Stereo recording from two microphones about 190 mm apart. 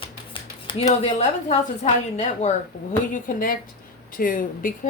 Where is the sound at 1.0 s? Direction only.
35° left (ahead or behind).